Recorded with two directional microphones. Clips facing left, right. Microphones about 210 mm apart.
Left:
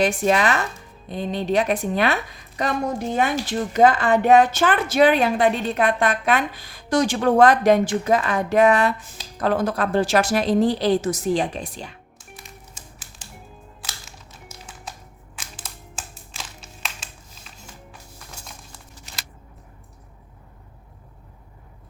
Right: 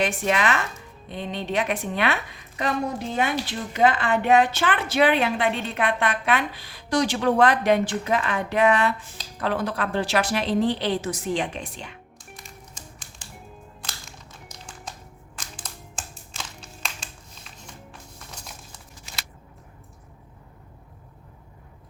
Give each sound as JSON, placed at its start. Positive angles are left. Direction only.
{"t": 0.0, "sound": "a woman's voice", "side_deg": 40}
{"t": 3.2, "sound": "speech", "side_deg": 45}
{"t": 12.3, "sound": "music", "side_deg": 5}
{"t": 15.4, "sound": "crushing", "side_deg": 5}
{"t": 16.3, "sound": "music", "side_deg": 5}